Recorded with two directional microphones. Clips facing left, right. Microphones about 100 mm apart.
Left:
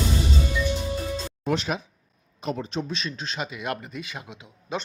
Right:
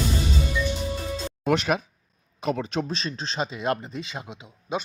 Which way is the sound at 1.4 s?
65° right (ahead or behind).